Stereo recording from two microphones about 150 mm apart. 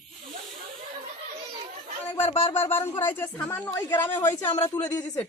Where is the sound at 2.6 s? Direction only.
15° left (ahead or behind).